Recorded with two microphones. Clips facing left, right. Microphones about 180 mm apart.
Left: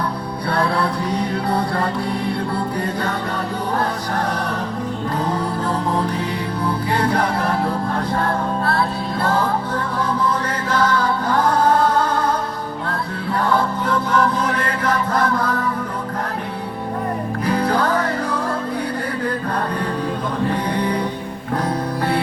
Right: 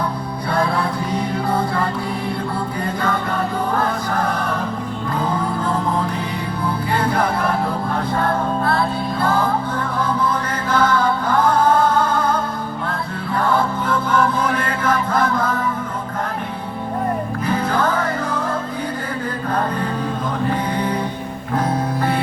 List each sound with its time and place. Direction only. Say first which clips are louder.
7.1 s music: even; 35° left (ahead or behind)
10.8 s music: right 2 dB; 35° left (ahead or behind)
15.1 s music: even; 35° left (ahead or behind)
17.4 s music: left 1 dB; 35° left (ahead or behind)